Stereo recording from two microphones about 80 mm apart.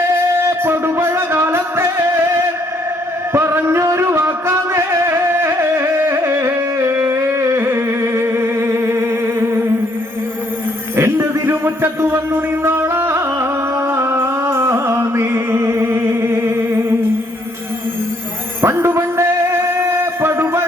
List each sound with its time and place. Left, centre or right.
0.3 s music: right
3.3 s music: right
10.9 s a sound: right
13.9 s music: right
18.6 s music: right